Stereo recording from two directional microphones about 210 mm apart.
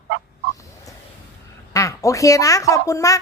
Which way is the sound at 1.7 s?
15° left (ahead or behind).